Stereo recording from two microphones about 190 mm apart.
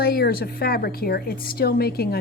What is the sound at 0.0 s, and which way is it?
A woman's voice, 55° left (ahead or behind).